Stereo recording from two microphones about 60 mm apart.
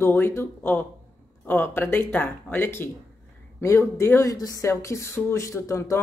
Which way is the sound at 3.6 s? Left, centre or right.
Left.